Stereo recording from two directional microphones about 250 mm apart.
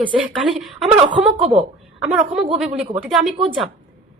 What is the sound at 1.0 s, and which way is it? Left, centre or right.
Speech, right.